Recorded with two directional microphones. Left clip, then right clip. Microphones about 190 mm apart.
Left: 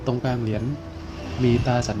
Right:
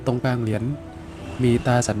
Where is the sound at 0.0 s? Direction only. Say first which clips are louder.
Right 2 dB; 25° right (ahead or behind).